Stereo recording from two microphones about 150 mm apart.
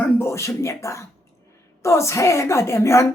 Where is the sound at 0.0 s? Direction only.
15° left (ahead or behind).